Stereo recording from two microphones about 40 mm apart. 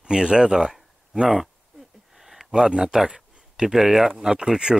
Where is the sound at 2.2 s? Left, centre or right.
Centre.